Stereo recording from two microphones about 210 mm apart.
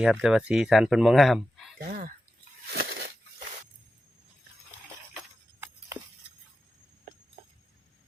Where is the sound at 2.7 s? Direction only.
50° right (ahead or behind).